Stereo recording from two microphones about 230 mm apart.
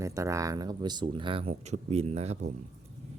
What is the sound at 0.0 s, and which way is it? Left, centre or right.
Speech, centre.